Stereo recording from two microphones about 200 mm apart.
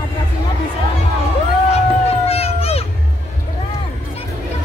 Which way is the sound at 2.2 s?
30° left (ahead or behind).